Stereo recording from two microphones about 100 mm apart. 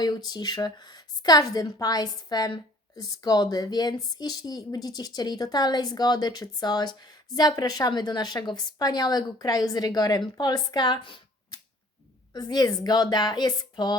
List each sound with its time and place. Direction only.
0.0 s speech: 40° left (ahead or behind)